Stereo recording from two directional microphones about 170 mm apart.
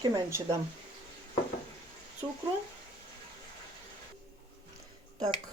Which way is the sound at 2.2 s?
20° right (ahead or behind).